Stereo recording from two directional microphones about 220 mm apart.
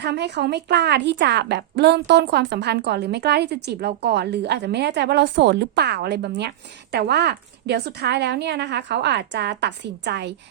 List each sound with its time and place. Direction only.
0.0 s a woman's voice: 50° right (ahead or behind)